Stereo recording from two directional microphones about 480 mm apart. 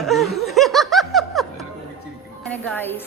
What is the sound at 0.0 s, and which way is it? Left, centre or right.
Snicker, centre.